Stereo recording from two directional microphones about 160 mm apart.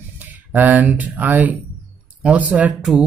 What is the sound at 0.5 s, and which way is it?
Speech, 10° right (ahead or behind).